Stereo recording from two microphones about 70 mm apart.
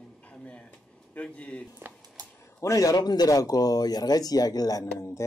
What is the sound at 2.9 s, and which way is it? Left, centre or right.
Speech, left.